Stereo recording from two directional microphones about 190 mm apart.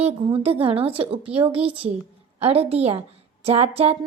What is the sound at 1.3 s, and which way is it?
Speech, 30° right (ahead or behind).